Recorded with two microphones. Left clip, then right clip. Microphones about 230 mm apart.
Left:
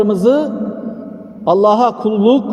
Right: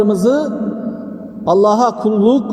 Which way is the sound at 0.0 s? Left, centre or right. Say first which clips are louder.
Left 1 dB; left.